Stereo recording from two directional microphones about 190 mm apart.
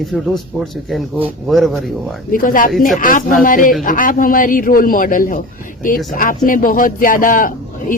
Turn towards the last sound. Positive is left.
turn(degrees=45)  # may be behind; listen again after turning